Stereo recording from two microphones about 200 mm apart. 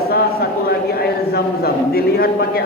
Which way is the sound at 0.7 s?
50° left (ahead or behind).